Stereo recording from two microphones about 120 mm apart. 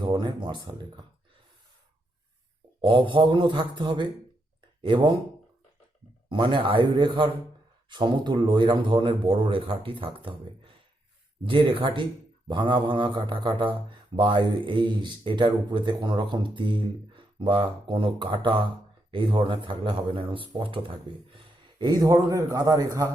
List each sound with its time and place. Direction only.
0.0 s speech: 40° right (ahead or behind)
2.8 s speech: 45° right (ahead or behind)
6.2 s a man's voice: 40° right (ahead or behind); by 23.1 s 25° right (ahead or behind)